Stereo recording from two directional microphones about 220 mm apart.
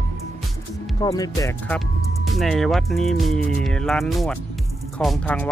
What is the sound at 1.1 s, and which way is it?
Speech, 15° left (ahead or behind).